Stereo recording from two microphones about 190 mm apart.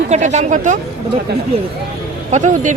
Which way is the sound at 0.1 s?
35° right (ahead or behind).